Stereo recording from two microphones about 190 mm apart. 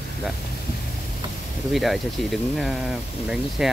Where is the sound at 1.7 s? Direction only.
Centre (ahead or behind).